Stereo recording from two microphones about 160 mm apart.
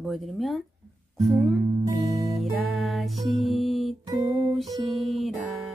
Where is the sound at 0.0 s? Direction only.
Centre (ahead or behind).